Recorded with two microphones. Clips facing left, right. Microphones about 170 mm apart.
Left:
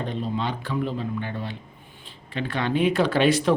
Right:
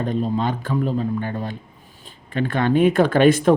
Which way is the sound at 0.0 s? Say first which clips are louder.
Right 6 dB; 45° right (ahead or behind).